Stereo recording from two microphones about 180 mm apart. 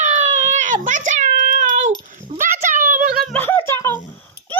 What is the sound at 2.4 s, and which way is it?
Clip-clop, 45° right (ahead or behind).